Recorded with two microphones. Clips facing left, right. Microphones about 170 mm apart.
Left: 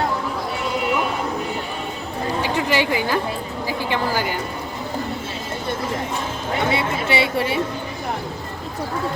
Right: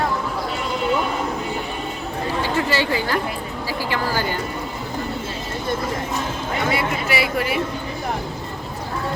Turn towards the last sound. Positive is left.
turn(degrees=30)  # may be behind; listen again after turning